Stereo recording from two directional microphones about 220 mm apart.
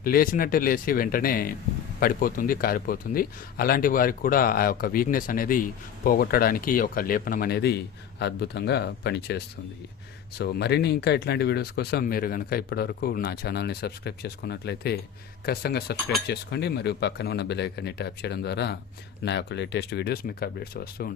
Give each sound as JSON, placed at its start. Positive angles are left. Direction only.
{"t": 0.0, "sound": "speech", "side_deg": 40}